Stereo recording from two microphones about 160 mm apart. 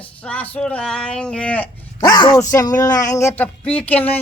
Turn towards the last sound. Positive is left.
turn(degrees=10)  # may be behind; listen again after turning